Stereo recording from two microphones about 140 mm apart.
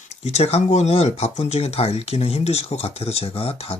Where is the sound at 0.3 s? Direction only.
50° left (ahead or behind).